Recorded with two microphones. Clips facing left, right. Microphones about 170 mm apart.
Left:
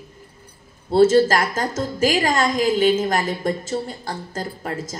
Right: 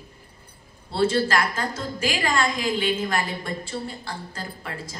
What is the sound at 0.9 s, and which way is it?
A woman's voice, 45° left (ahead or behind).